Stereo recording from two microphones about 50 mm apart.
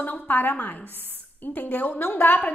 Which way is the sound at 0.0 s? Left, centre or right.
Left.